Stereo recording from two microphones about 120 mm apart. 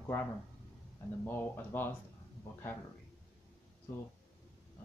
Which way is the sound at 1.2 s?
15° left (ahead or behind).